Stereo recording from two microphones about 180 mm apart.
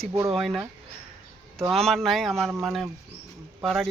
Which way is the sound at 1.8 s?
Centre (ahead or behind).